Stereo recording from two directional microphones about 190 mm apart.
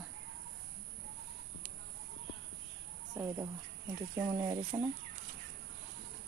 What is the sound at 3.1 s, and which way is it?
Speech, 15° right (ahead or behind).